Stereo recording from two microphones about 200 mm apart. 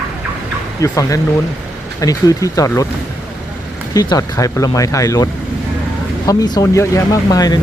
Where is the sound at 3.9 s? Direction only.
20° left (ahead or behind).